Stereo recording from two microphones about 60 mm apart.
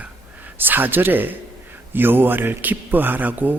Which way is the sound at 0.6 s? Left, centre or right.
Right.